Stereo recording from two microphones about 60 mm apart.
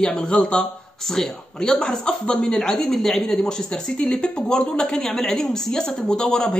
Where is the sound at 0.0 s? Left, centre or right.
Centre.